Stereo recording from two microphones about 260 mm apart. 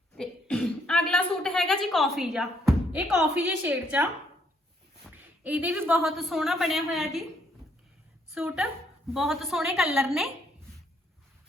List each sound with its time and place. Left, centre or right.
0.2 s cough: centre
5.1 s a woman's voice: centre
8.3 s a woman's voice: centre